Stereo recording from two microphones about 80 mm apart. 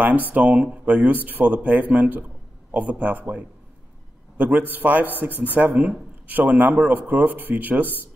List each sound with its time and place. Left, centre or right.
0.0 s speech: centre